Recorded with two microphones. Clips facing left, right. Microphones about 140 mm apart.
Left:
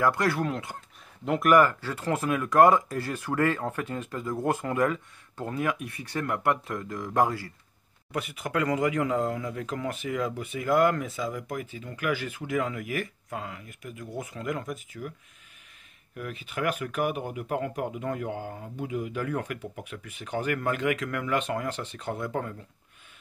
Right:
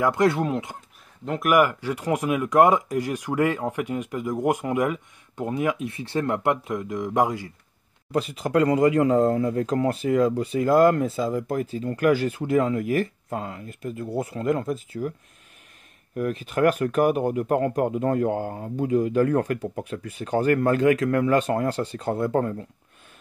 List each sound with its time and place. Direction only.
0.0 s speech: 20° right (ahead or behind)
1.2 s speech: centre (ahead or behind)
1.5 s speech: 15° right (ahead or behind); by 10.2 s 40° right (ahead or behind)
10.2 s speech: 30° right (ahead or behind)
16.2 s speech: 40° right (ahead or behind)